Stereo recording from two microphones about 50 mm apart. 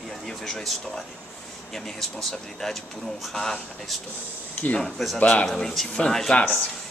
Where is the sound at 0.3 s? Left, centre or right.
Centre.